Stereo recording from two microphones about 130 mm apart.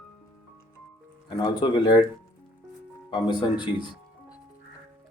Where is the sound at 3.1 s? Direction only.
35° left (ahead or behind).